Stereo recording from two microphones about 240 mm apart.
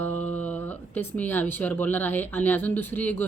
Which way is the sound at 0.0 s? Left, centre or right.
Centre.